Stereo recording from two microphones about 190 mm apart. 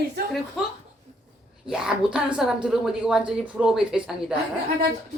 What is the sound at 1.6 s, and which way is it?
A woman's voice, 5° right (ahead or behind).